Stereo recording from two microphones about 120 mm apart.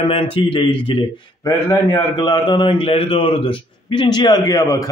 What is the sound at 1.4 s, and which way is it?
Speech, 25° left (ahead or behind).